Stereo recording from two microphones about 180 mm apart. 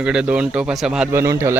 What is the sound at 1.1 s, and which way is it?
Speech, 15° right (ahead or behind).